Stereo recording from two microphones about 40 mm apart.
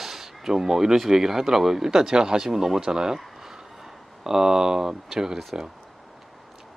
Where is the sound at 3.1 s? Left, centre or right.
Centre.